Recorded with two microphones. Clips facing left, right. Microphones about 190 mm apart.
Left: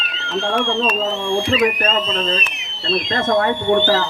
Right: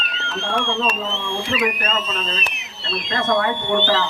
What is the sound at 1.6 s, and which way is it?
Speech, 30° left (ahead or behind).